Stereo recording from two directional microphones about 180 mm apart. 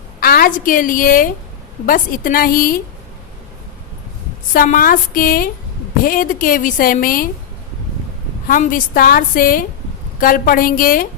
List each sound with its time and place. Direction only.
0.2 s a woman's voice: 55° left (ahead or behind)
4.5 s a woman's voice: 50° left (ahead or behind)
8.4 s a woman's voice: 50° left (ahead or behind)